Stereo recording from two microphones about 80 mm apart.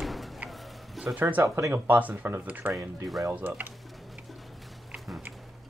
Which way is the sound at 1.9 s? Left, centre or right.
Right.